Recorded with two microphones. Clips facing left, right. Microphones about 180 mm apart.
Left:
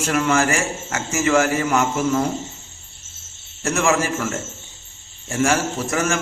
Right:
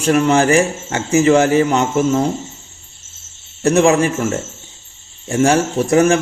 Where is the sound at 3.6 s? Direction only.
35° right (ahead or behind).